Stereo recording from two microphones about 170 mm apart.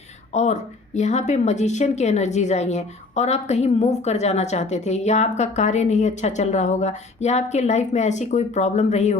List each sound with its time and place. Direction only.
0.3 s a woman's voice: 45° left (ahead or behind)